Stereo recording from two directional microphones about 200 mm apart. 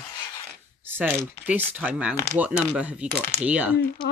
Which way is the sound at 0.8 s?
10° right (ahead or behind).